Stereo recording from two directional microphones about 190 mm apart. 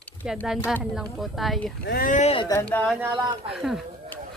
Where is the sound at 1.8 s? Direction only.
50° left (ahead or behind); by 2.5 s 35° left (ahead or behind).